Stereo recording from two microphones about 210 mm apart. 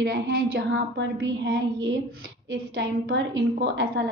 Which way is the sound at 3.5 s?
55° right (ahead or behind).